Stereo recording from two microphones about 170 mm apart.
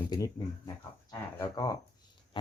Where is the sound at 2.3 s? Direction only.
30° left (ahead or behind).